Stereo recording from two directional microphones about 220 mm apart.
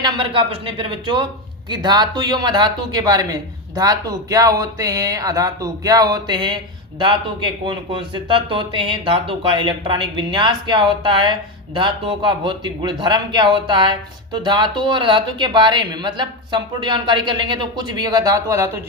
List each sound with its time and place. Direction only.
0.0 s a man's voice: 25° right (ahead or behind)